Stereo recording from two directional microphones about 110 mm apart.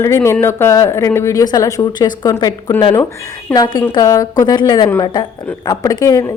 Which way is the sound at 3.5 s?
35° left (ahead or behind).